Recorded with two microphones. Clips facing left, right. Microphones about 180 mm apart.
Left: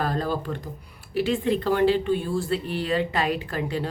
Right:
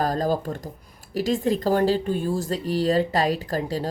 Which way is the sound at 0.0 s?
40° right (ahead or behind).